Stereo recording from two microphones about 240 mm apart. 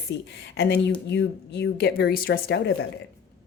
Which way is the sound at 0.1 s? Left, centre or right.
Left.